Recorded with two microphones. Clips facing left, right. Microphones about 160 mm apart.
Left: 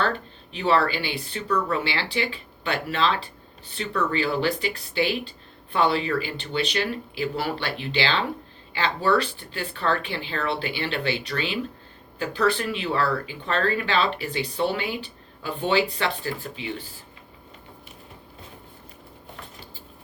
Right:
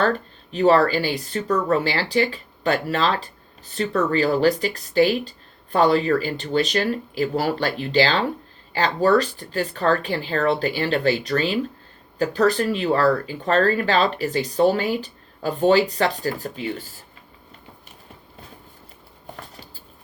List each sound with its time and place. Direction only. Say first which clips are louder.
0.0 s speech: right 5 dB; 40° right (ahead or behind)